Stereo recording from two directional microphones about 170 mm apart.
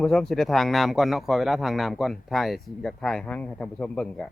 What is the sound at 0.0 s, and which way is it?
Speech, 5° left (ahead or behind).